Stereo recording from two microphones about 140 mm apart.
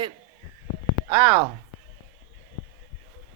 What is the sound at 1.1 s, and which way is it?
Speech, 25° right (ahead or behind).